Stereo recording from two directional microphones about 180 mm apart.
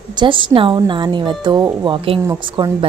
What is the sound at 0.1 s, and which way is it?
Speech, 25° right (ahead or behind).